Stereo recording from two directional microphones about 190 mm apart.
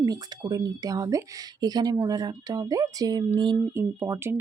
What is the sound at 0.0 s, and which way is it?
Speech, 20° right (ahead or behind).